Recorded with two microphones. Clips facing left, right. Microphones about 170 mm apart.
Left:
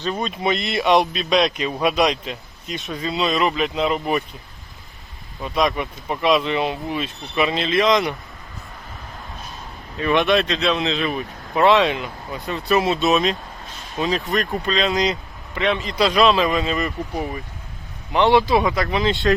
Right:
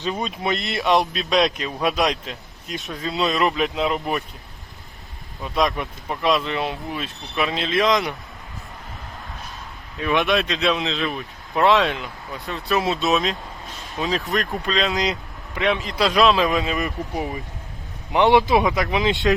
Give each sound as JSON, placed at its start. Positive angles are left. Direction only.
{"t": 0.1, "sound": "speech", "side_deg": -5}
{"t": 5.4, "sound": "speech", "side_deg": 0}
{"t": 10.0, "sound": "a man's voice", "side_deg": 0}